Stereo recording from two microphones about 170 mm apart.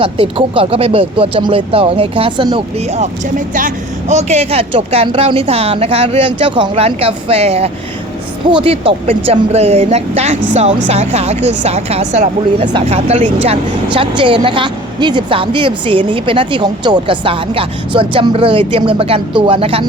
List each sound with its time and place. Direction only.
0.0 s speech: 30° right (ahead or behind)
2.9 s speech: 45° right (ahead or behind)
4.1 s speech: 40° right (ahead or behind)